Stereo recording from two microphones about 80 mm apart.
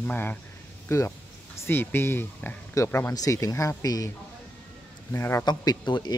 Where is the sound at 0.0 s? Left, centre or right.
Left.